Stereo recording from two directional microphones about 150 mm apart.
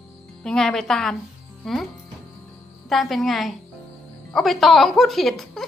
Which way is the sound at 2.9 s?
Centre (ahead or behind).